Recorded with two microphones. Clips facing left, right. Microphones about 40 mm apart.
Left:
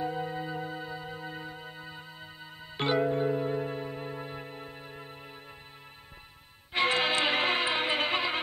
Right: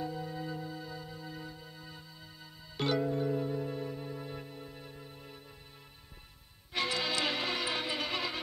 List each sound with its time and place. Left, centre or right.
0.0 s music: left
6.7 s music: left